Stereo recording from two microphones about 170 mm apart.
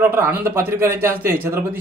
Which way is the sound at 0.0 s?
15° right (ahead or behind).